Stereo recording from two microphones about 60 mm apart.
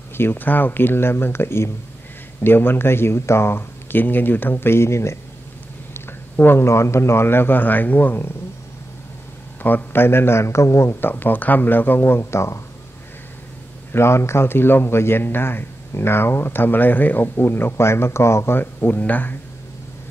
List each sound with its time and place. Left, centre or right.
0.2 s speech: left
5.9 s speech: left
9.6 s a man's voice: left
11.0 s speech: left
13.9 s speech: left